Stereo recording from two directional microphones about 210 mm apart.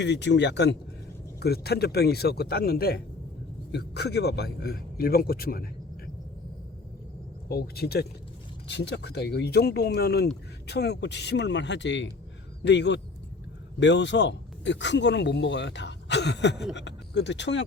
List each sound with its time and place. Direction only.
0.0 s a man's voice: 55° left (ahead or behind)
7.4 s a man's voice: 50° left (ahead or behind)